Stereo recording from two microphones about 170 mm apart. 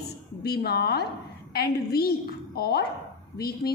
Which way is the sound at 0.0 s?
70° left (ahead or behind).